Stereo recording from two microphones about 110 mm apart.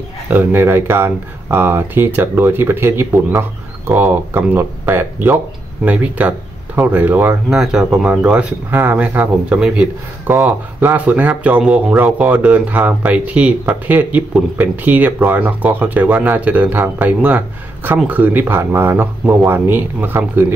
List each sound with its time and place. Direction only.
0.3 s speech: 20° right (ahead or behind)
7.4 s speech: 5° right (ahead or behind)